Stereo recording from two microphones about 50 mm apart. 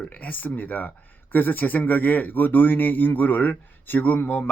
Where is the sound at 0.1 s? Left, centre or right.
Left.